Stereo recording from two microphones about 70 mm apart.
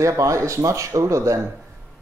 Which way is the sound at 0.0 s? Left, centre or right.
Right.